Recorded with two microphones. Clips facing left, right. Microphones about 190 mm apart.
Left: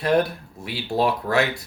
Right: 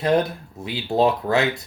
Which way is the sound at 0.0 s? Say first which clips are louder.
Even; 20° right (ahead or behind).